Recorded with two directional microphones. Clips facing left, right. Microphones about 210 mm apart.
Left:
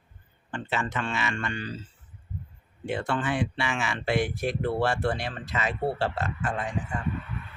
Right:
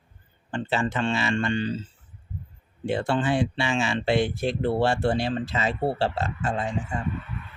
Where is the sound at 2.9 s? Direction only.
30° right (ahead or behind).